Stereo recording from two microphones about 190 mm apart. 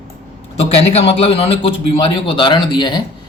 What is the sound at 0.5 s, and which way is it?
A man's voice, 30° left (ahead or behind).